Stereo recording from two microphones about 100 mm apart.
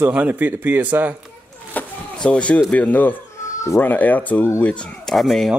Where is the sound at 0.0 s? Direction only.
15° right (ahead or behind).